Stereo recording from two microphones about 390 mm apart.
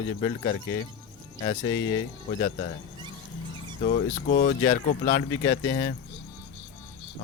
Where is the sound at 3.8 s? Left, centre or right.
Centre.